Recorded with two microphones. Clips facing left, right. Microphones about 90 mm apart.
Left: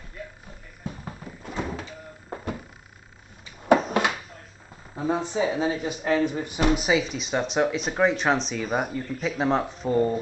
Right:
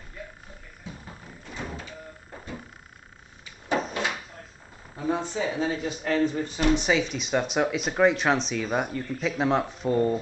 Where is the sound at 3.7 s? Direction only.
60° left (ahead or behind).